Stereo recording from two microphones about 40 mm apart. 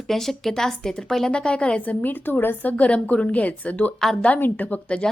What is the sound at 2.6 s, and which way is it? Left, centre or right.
A woman's voice, left.